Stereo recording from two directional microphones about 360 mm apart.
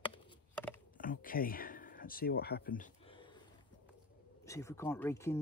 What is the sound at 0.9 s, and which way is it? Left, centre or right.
Speech, left.